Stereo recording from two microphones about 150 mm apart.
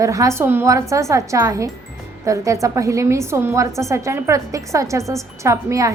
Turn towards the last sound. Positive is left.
turn(degrees=-20)  # may be behind; listen again after turning